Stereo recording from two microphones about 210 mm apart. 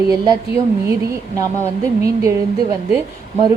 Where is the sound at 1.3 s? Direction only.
15° right (ahead or behind).